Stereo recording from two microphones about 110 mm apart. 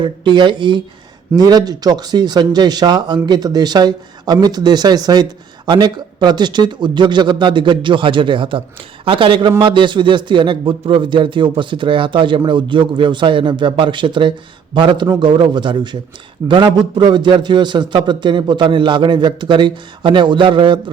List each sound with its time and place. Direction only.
0.0 s a man's voice: 45° right (ahead or behind)